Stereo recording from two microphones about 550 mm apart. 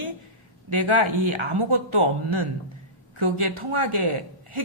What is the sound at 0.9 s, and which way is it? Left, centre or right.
A man's voice, right.